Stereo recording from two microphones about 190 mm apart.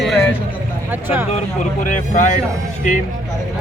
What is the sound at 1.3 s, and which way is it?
Speech, 40° left (ahead or behind).